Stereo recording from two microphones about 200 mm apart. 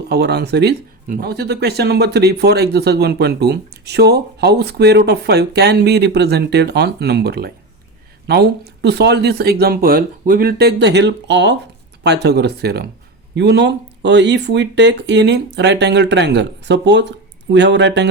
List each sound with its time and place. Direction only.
0.1 s speech: 55° right (ahead or behind)